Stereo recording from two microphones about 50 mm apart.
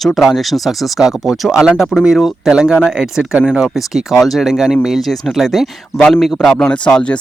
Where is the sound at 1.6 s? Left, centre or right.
Centre.